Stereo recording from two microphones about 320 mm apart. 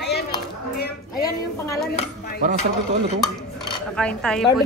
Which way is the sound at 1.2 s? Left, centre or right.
Centre.